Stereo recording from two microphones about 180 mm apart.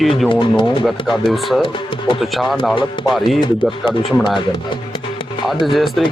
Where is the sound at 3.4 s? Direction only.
25° left (ahead or behind).